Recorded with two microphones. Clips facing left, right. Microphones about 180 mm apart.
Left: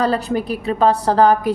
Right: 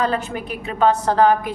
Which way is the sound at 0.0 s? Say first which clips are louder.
Left 4 dB; 35° left (ahead or behind).